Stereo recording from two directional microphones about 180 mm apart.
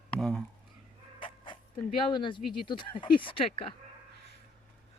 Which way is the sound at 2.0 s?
25° left (ahead or behind).